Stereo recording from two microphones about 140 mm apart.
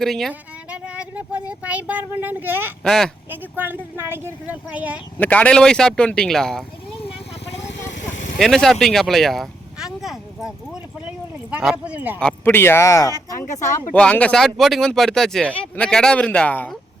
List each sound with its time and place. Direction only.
0.0 s speech: centre (ahead or behind)
0.7 s speech: 10° right (ahead or behind)
2.8 s speech: centre (ahead or behind)
3.2 s speech: 15° right (ahead or behind)
5.2 s speech: 10° left (ahead or behind)
7.8 s vehicle: 60° left (ahead or behind)
8.4 s speech: 5° left (ahead or behind); by 12.2 s 10° right (ahead or behind)
12.2 s speech: 15° left (ahead or behind)
13.9 s speech: 10° left (ahead or behind)